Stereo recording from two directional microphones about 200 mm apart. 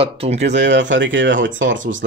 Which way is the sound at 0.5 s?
60° right (ahead or behind).